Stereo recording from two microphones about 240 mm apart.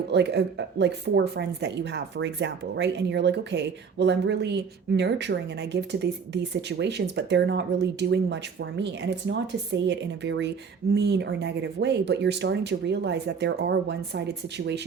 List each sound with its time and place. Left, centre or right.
0.1 s speech: right